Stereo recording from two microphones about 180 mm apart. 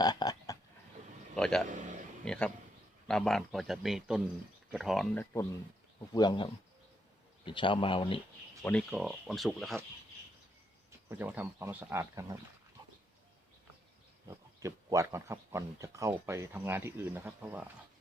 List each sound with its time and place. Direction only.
0.0 s a sound: 20° left (ahead or behind)
1.4 s a man's voice: 5° left (ahead or behind)
5.1 s speech: 15° left (ahead or behind)
6.1 s speech: 25° left (ahead or behind)
8.9 s a man's voice: 5° right (ahead or behind)
11.1 s speech: 10° right (ahead or behind)
14.3 s speech: 15° right (ahead or behind)